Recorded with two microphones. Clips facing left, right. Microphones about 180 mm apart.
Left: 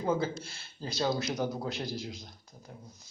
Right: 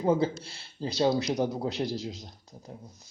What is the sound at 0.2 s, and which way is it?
Speech, 35° right (ahead or behind).